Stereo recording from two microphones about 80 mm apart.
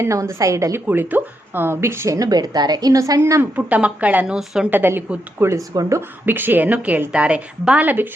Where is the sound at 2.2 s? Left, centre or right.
Right.